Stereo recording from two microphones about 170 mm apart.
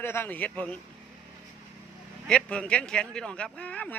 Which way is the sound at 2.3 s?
5° left (ahead or behind).